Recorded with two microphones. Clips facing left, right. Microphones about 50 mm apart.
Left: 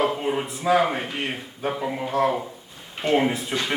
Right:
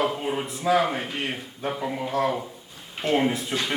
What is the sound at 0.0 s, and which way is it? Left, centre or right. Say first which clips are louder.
A man's voice: left 2 dB; centre.